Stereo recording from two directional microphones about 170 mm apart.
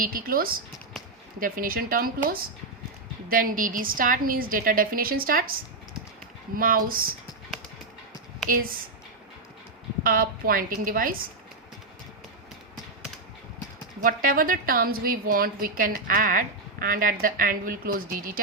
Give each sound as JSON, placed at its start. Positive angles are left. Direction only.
{"t": 0.0, "sound": "a woman's voice", "side_deg": -55}
{"t": 8.4, "sound": "a woman's voice", "side_deg": -55}
{"t": 10.0, "sound": "a woman's voice", "side_deg": -55}
{"t": 14.0, "sound": "a woman's voice", "side_deg": -55}